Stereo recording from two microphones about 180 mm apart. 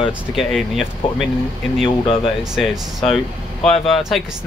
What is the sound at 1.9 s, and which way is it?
Speech, 30° left (ahead or behind).